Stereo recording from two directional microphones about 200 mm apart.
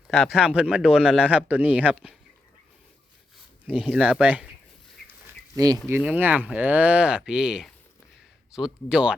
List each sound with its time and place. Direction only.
0.1 s speech: 5° right (ahead or behind)
3.7 s speech: 5° right (ahead or behind)
5.5 s speech: 15° right (ahead or behind)
5.9 s speech: 5° right (ahead or behind)